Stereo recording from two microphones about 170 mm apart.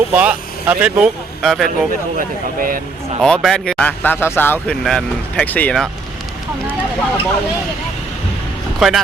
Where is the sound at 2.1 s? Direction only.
55° right (ahead or behind).